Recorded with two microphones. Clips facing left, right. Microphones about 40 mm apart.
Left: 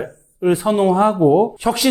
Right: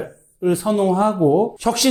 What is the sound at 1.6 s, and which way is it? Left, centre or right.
Speech, centre.